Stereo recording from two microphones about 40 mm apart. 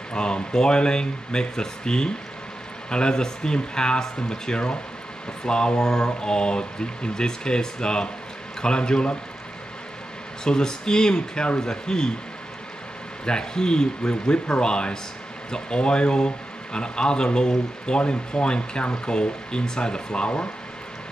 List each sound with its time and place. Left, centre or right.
0.1 s speech: left
10.4 s speech: centre
13.2 s speech: centre